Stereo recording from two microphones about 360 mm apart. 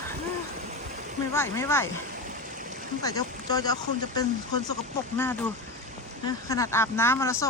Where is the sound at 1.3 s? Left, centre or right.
Centre.